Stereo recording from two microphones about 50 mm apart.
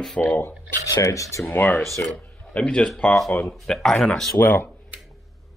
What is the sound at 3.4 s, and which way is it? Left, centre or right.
Speech, centre.